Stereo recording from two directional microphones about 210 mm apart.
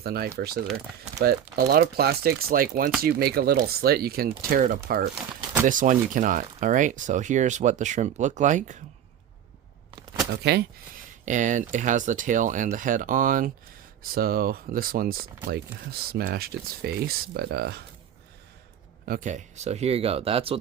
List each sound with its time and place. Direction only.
0.0 s speech: 45° right (ahead or behind)
10.3 s speech: 50° right (ahead or behind)
11.3 s speech: 35° right (ahead or behind)
19.0 s speech: 40° right (ahead or behind)